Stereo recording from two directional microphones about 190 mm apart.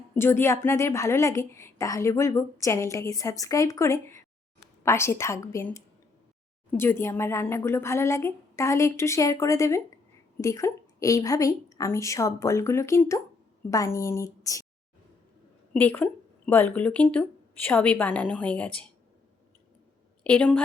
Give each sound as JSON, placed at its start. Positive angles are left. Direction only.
{"t": 0.1, "sound": "a woman's voice", "side_deg": 10}
{"t": 15.7, "sound": "a woman's voice", "side_deg": 10}
{"t": 20.2, "sound": "a woman's voice", "side_deg": 5}